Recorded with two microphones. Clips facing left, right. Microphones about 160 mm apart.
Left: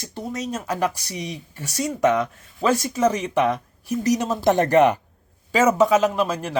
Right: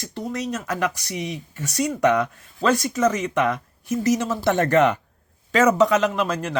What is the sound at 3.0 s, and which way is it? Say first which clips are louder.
Speech: left 2 dB; 10° left (ahead or behind).